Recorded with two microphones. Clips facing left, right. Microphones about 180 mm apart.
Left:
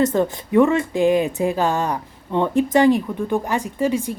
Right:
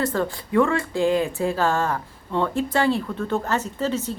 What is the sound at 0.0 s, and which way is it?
Speech, 20° left (ahead or behind).